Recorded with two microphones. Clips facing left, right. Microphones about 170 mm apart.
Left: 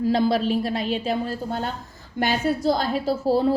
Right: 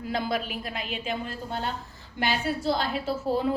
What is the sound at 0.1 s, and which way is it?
A woman's voice, 35° left (ahead or behind).